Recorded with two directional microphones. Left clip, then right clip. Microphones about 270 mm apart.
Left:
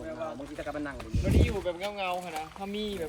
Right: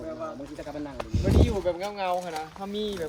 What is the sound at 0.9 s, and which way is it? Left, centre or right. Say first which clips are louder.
Speech: right 8 dB; centre.